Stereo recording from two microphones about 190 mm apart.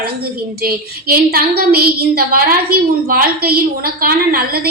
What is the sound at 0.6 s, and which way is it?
A woman's voice, 50° right (ahead or behind).